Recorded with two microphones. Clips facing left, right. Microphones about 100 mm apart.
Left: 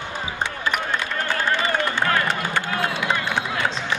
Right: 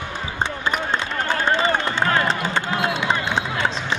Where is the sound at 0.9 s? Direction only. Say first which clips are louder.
Right 2 dB; 20° right (ahead or behind).